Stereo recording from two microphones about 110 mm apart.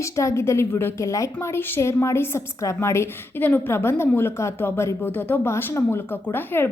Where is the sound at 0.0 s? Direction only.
25° left (ahead or behind).